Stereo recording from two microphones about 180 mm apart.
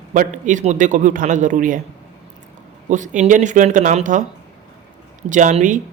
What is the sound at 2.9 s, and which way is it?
Speech, 45° right (ahead or behind).